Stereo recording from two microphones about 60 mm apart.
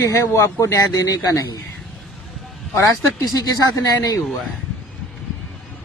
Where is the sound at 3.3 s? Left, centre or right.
Left.